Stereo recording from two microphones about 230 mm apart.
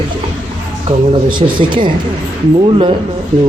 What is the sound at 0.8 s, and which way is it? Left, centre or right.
Speech, right.